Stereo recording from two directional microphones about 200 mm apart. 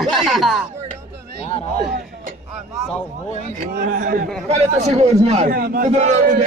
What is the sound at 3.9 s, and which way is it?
Speech, 45° right (ahead or behind).